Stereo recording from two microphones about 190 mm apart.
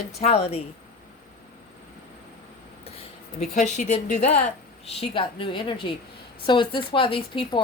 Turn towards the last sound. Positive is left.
turn(degrees=25)  # may be behind; listen again after turning